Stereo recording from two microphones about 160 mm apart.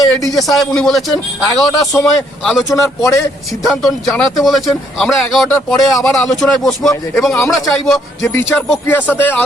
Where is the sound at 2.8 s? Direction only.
20° left (ahead or behind).